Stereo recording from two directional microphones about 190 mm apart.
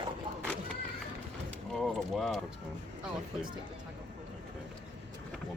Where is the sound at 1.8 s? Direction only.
Centre (ahead or behind).